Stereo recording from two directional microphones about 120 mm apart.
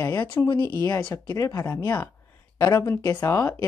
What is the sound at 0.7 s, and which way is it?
Speech, 20° left (ahead or behind).